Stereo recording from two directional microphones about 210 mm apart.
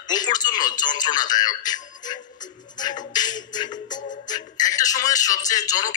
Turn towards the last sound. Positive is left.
turn(degrees=15)  # may be behind; listen again after turning